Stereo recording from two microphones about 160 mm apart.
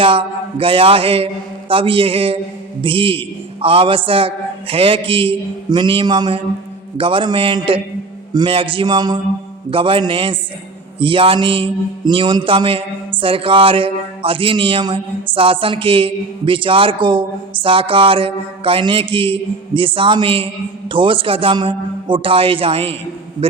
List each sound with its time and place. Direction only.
0.0 s mantra: 35° right (ahead or behind)
8.3 s a man's voice: 30° right (ahead or behind)
9.6 s mantra: 35° right (ahead or behind)